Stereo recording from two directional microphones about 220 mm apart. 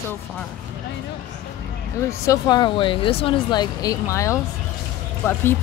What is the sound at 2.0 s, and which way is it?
Speech, 15° left (ahead or behind).